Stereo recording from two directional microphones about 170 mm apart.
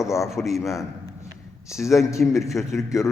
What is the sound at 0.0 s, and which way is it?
Speech, 20° left (ahead or behind).